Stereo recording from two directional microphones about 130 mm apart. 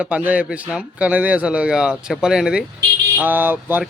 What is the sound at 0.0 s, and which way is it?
Speech, 10° right (ahead or behind).